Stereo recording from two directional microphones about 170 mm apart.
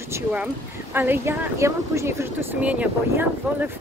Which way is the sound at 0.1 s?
10° right (ahead or behind).